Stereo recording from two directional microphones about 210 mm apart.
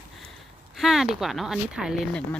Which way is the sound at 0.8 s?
Centre (ahead or behind).